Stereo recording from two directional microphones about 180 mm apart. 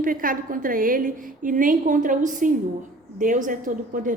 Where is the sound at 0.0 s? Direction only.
50° right (ahead or behind).